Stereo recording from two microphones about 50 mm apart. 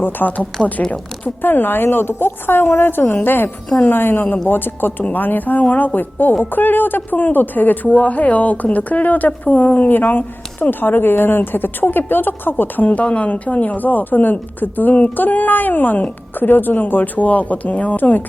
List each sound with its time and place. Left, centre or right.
0.0 s a woman's voice: left